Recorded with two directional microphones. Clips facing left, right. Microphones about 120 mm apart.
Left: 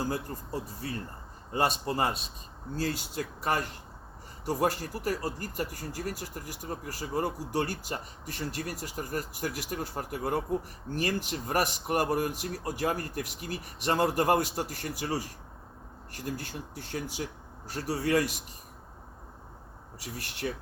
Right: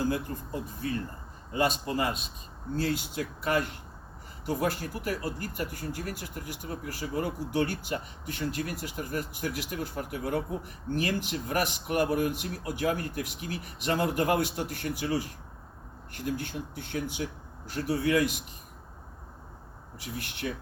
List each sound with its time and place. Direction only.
0.1 s speech: 35° left (ahead or behind)
20.0 s speech: 35° left (ahead or behind)